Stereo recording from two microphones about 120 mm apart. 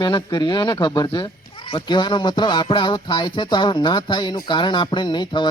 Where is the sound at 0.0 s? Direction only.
40° left (ahead or behind).